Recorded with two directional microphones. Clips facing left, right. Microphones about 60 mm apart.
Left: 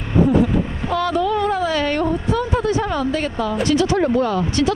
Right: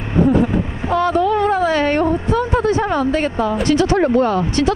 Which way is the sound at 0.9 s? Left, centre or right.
Right.